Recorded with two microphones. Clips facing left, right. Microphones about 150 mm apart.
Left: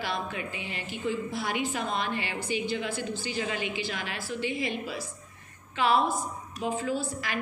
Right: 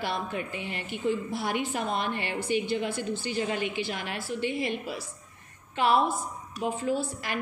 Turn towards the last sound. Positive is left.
turn(degrees=-55)  # may be behind; listen again after turning